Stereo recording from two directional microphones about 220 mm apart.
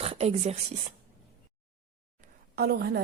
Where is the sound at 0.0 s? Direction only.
30° right (ahead or behind).